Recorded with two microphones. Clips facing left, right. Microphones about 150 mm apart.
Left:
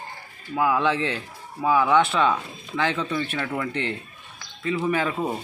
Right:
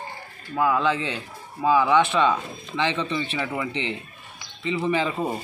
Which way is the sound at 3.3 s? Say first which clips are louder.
Even; 5° right (ahead or behind).